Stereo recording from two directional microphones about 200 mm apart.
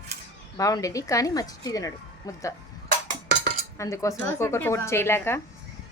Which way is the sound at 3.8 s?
15° left (ahead or behind).